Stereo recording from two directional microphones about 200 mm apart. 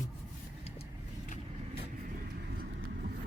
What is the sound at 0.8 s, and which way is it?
Vehicle, 40° left (ahead or behind).